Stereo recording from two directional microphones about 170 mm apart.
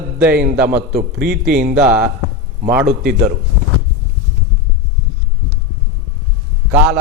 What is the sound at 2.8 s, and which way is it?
Speech, 60° right (ahead or behind).